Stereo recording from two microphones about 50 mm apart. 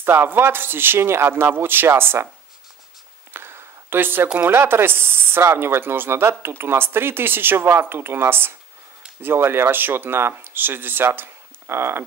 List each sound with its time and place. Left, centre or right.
0.0 s speech: right
1.3 s speech: right
3.3 s a sound: right
4.5 s speech: right